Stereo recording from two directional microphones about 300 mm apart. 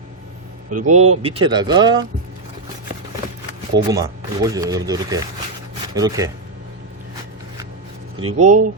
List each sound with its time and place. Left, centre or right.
0.8 s speech: right
3.8 s speech: centre
8.3 s speech: right